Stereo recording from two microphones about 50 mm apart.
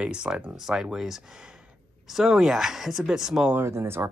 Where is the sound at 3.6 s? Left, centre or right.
Right.